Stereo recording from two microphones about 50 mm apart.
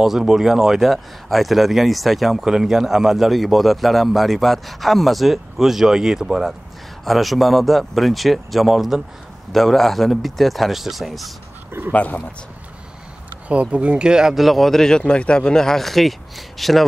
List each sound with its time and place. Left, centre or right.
0.0 s a man's voice: centre
9.5 s a man's voice: centre
11.9 s speech: left
13.5 s speech: right
14.3 s a man's voice: centre